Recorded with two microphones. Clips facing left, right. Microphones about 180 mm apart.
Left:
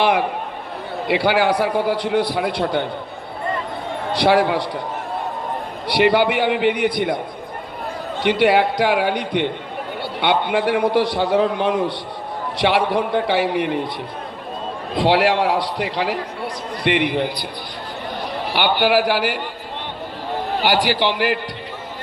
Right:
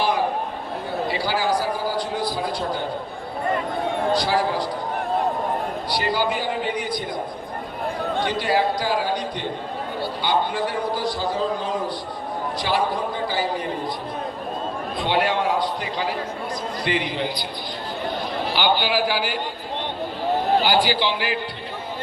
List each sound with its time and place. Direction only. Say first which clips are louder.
0.0 s a man's voice: left 3 dB; 65° left (ahead or behind)
4.2 s a man's voice: left 6 dB; 70° left (ahead or behind)
5.9 s a man's voice: left 9 dB; 65° left (ahead or behind)
8.2 s a man's voice: left 7 dB; 65° left (ahead or behind)
14.9 s a man's voice: left 6 dB; 90° left
16.8 s a man's voice: left 7 dB; 65° left (ahead or behind)
18.5 s a man's voice: left 5 dB; 65° left (ahead or behind)
20.7 s a man's voice: left 2 dB; 70° left (ahead or behind)